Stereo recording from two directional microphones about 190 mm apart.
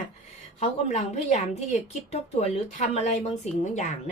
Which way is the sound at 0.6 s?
35° left (ahead or behind).